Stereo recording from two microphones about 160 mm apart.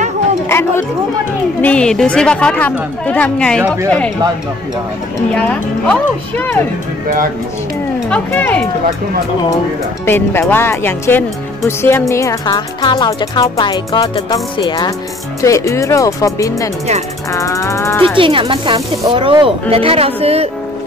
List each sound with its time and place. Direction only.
0.5 s chatter: 15° left (ahead or behind)
1.6 s speech: 5° left (ahead or behind)
3.6 s speech: 20° right (ahead or behind)
5.3 s speech: 5° left (ahead or behind)
8.1 s speech: 10° left (ahead or behind)
10.0 s speech: 15° left (ahead or behind)
18.1 s speech: 35° right (ahead or behind)